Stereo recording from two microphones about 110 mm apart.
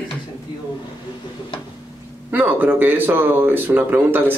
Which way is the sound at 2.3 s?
15° right (ahead or behind).